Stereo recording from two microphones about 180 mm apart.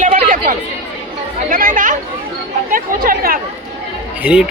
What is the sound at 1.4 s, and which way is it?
Chatter, 50° right (ahead or behind).